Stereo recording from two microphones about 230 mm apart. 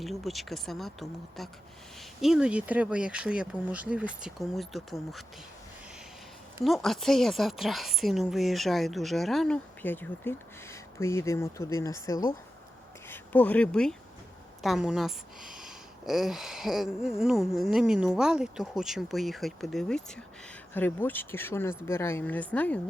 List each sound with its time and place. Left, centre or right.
0.0 s a woman's voice: centre
6.7 s a woman's voice: centre